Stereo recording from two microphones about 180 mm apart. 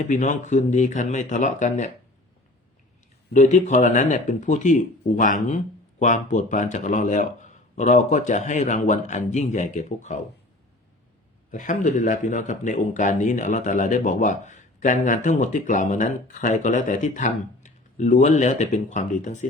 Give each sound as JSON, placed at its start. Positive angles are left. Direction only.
{"t": 0.1, "sound": "speech", "side_deg": 45}
{"t": 3.3, "sound": "speech", "side_deg": 45}
{"t": 11.5, "sound": "speech", "side_deg": 45}